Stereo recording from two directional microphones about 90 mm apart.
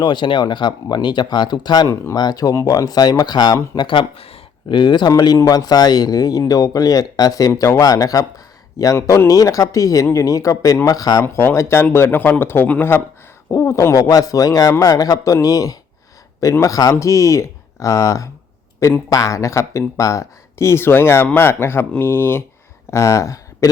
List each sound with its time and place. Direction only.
0.0 s a man's voice: 60° left (ahead or behind)
11.3 s speech: 30° left (ahead or behind)
13.5 s a man's voice: 35° left (ahead or behind)